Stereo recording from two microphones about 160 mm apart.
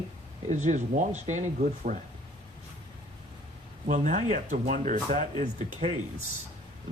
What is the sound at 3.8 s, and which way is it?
Speech, 50° right (ahead or behind).